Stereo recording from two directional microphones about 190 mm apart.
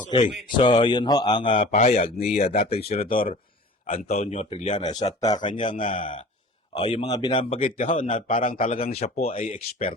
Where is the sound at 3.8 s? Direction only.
35° left (ahead or behind).